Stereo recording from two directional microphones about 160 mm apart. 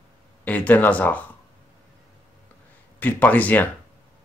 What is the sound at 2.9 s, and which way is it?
Speech, 10° left (ahead or behind).